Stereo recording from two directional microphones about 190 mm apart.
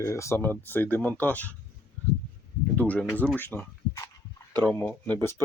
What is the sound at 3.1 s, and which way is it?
Speech, 10° left (ahead or behind).